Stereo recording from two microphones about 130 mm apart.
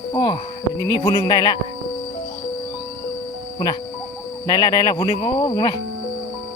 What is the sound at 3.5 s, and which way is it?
Speech, 30° left (ahead or behind).